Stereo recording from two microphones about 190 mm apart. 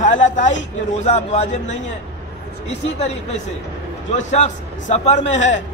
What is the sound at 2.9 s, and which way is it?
Speech, 35° left (ahead or behind).